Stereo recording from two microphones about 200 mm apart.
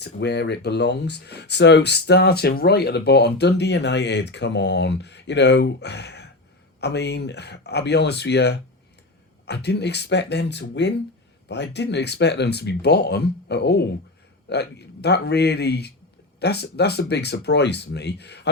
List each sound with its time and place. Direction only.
0.0 s speech: 55° left (ahead or behind)